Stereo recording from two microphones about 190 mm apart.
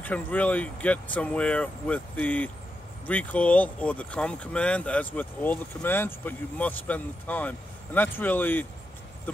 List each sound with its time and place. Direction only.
0.0 s speech: 10° left (ahead or behind)